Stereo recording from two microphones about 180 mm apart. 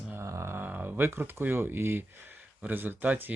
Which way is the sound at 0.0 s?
15° right (ahead or behind).